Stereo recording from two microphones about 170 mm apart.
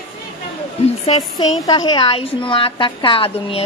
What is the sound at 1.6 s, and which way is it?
A woman's voice, 25° left (ahead or behind).